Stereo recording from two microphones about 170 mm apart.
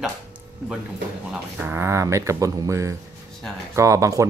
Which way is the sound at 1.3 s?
10° right (ahead or behind).